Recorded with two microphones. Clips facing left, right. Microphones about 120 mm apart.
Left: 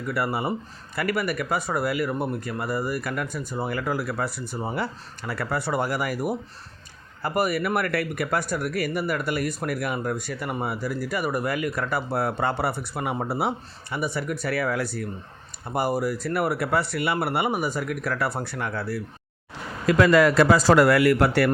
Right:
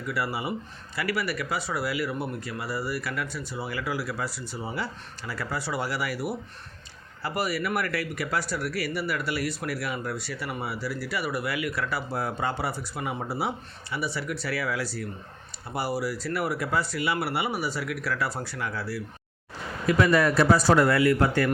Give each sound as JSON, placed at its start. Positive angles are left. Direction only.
{"t": 0.1, "sound": "speech", "side_deg": 55}
{"t": 19.9, "sound": "speech", "side_deg": 90}